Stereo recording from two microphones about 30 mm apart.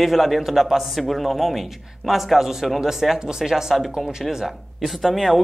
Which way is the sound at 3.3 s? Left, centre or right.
Centre.